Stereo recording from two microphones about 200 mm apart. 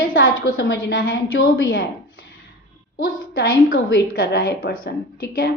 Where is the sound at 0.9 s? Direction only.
50° left (ahead or behind).